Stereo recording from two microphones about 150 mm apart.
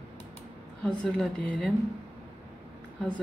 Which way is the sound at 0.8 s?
5° left (ahead or behind).